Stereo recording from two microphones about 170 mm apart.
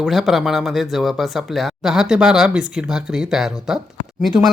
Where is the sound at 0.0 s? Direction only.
Centre (ahead or behind).